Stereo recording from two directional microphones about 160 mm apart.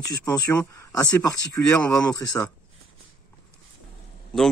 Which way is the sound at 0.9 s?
20° left (ahead or behind).